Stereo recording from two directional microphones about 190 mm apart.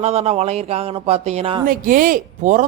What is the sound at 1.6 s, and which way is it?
Speech, 45° right (ahead or behind).